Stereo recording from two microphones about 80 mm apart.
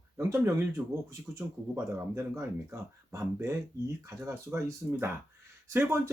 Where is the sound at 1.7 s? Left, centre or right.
Right.